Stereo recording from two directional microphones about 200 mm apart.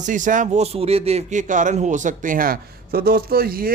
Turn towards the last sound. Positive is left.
turn(degrees=-45)  # may be behind; listen again after turning